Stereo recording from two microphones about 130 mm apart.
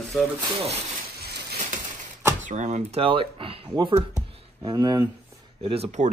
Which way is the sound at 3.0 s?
45° right (ahead or behind).